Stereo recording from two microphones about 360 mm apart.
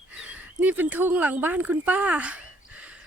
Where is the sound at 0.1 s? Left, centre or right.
Centre.